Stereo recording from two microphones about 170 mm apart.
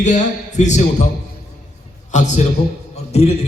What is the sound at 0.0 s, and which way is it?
A man's voice, 45° left (ahead or behind).